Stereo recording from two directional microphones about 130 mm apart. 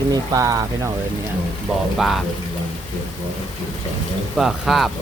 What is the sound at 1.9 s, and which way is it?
Speech, centre (ahead or behind).